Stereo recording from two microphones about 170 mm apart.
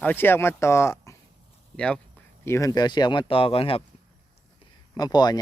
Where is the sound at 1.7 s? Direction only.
5° left (ahead or behind).